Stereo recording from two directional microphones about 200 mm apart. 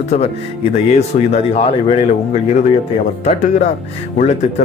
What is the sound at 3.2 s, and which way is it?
Speech, 35° left (ahead or behind).